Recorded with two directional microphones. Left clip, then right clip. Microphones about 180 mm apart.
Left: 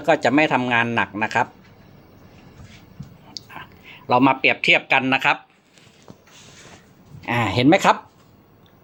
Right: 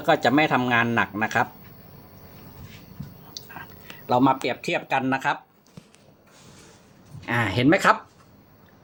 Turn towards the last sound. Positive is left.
turn(degrees=15)  # may be behind; listen again after turning